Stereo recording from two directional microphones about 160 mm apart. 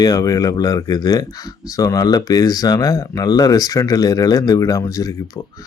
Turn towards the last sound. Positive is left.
turn(degrees=20)  # may be behind; listen again after turning